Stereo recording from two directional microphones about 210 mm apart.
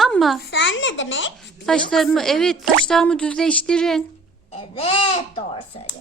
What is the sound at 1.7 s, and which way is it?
Speech, centre (ahead or behind).